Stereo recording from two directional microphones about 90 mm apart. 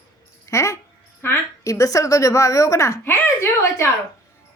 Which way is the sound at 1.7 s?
40° left (ahead or behind).